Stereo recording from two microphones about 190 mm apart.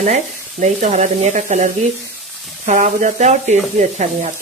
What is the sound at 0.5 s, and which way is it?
Speech, 40° right (ahead or behind).